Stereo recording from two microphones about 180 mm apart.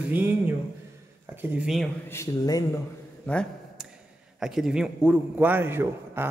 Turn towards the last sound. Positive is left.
turn(degrees=-10)  # may be behind; listen again after turning